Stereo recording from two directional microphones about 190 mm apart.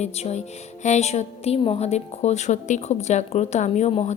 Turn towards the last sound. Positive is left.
turn(degrees=35)  # may be behind; listen again after turning